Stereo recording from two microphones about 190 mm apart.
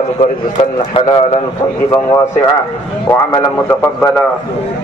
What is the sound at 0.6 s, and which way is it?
Speech, 30° left (ahead or behind).